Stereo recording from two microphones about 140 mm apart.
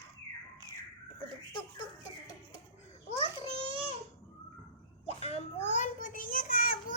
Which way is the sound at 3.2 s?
40° right (ahead or behind).